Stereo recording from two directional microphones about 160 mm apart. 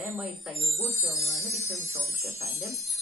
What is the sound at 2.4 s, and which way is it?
Speech, 20° right (ahead or behind).